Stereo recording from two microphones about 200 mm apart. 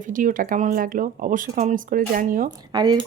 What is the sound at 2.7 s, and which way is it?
Speech, 20° right (ahead or behind).